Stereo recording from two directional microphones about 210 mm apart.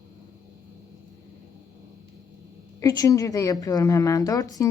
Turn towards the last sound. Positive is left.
turn(degrees=15)  # may be behind; listen again after turning